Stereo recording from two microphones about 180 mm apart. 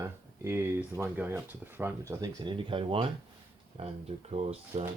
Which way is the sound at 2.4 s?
30° right (ahead or behind).